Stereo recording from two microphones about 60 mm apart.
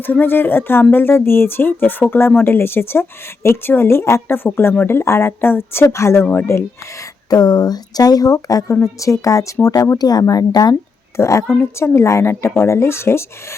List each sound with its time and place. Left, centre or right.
0.0 s speech: left
5.8 s a woman's voice: left
6.3 s speech: left
7.3 s speech: left
8.8 s a woman's voice: left
11.2 s a woman's voice: left